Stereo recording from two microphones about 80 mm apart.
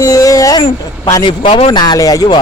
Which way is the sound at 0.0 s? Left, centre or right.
Left.